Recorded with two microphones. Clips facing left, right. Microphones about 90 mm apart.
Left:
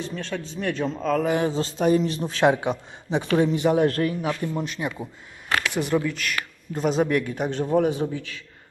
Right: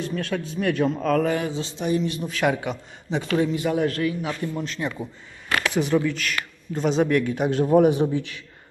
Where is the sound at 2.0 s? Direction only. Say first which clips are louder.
Left 3 dB; 30° left (ahead or behind).